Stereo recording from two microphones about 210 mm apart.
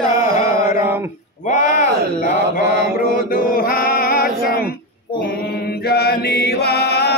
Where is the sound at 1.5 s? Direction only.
40° left (ahead or behind).